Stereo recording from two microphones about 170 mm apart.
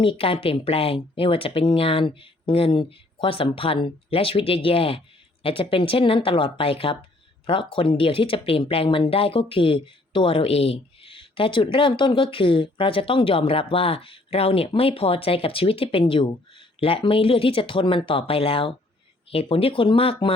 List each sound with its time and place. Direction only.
0.0 s speech: 30° left (ahead or behind)